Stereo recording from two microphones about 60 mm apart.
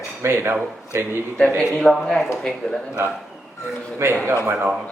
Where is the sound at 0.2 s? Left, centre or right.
Right.